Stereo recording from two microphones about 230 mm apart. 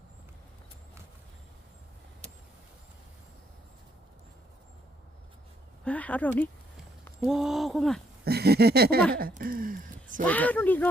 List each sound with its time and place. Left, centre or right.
5.8 s speech: centre
8.2 s a sound: right
9.1 s speech: right
10.2 s speech: centre